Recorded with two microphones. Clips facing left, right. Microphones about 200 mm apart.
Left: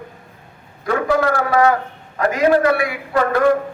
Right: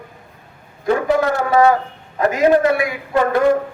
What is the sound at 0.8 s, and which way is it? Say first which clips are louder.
A man's voice: right 1 dB; 25° right (ahead or behind).